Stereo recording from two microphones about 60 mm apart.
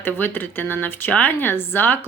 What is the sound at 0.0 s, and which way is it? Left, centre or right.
Speech, left.